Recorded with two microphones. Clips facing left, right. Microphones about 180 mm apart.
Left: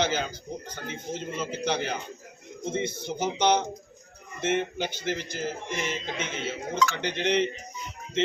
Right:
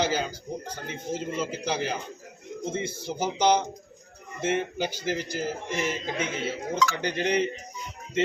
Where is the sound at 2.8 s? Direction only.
30° right (ahead or behind).